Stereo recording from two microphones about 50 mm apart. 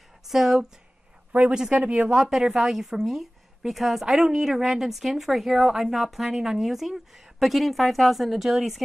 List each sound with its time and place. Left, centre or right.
0.3 s speech: centre
1.5 s speech: centre
2.0 s a woman's voice: centre